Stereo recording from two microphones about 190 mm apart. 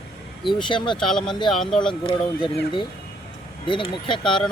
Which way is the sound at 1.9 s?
25° left (ahead or behind).